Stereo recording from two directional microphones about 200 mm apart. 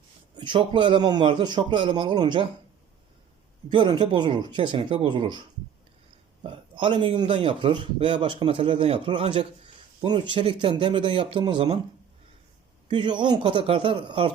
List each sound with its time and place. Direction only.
0.3 s speech: 25° right (ahead or behind)
3.7 s speech: 25° right (ahead or behind)
6.4 s speech: 25° right (ahead or behind)
12.9 s speech: 25° right (ahead or behind)